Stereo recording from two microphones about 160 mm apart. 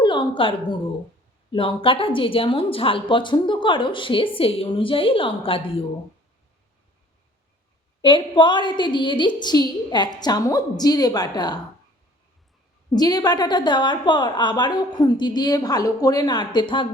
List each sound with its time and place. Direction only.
0.0 s a sound: 30° left (ahead or behind)
1.5 s speech: 35° left (ahead or behind)
8.0 s a woman's voice: 30° left (ahead or behind)
12.9 s a woman's voice: 25° left (ahead or behind)